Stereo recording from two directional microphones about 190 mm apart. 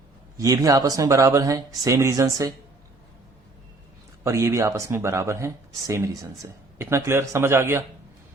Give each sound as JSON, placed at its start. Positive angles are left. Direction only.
{"t": 0.3, "sound": "speech", "side_deg": -15}
{"t": 4.2, "sound": "speech", "side_deg": -15}